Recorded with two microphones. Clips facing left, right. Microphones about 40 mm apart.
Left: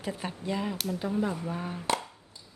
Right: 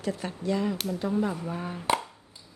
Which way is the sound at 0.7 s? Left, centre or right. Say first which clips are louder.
Right 2 dB; centre.